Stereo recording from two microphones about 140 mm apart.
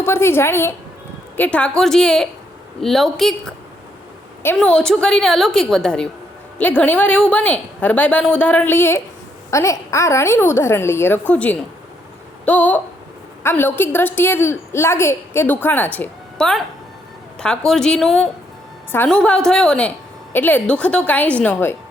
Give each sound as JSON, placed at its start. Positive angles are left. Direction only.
{"t": 0.0, "sound": "a woman's voice", "side_deg": 15}
{"t": 4.5, "sound": "a woman's voice", "side_deg": 5}